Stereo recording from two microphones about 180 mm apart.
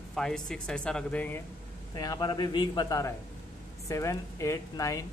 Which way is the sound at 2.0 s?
20° left (ahead or behind).